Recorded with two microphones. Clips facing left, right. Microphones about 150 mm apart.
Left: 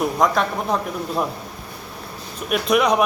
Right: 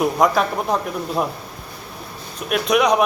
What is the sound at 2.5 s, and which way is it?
Speech, 5° left (ahead or behind).